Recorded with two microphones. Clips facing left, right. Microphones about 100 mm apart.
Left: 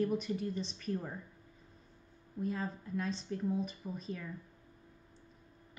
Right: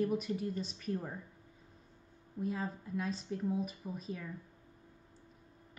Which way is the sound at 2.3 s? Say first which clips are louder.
Even; 5° right (ahead or behind).